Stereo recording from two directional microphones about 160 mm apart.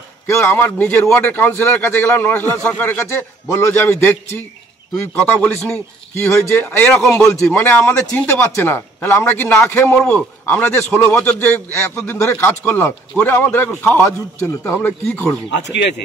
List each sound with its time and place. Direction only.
0.3 s speech: 15° left (ahead or behind)
15.5 s speech: 90° left